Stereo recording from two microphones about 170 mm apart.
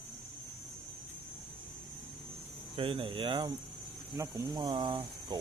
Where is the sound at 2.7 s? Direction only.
30° right (ahead or behind).